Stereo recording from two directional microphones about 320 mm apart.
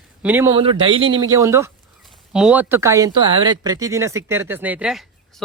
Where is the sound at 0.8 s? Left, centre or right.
Centre.